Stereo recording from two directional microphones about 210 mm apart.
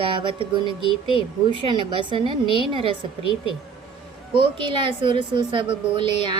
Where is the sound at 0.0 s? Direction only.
25° right (ahead or behind).